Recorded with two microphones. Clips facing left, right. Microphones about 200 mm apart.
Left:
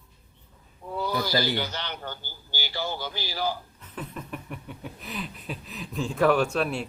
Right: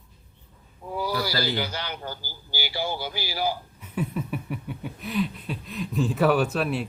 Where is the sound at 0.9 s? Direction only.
10° right (ahead or behind).